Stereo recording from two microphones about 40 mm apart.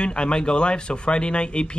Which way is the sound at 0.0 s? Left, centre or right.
Left.